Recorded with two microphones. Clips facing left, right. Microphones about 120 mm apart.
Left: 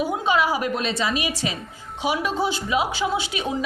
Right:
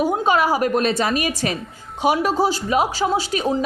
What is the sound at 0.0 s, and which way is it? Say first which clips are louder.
A woman's voice: right 3 dB; 45° right (ahead or behind).